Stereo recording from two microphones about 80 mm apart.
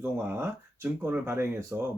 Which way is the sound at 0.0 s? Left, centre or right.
Right.